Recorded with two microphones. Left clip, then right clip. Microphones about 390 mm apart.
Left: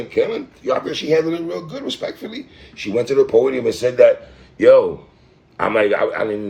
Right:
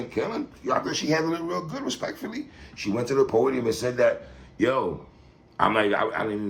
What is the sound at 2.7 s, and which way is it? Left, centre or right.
Speech, centre.